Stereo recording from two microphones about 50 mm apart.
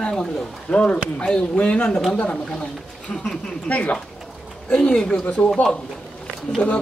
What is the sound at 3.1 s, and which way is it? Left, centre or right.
Speech, centre.